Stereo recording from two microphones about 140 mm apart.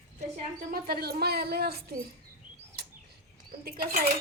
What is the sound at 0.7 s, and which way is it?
A woman's voice, 90° right.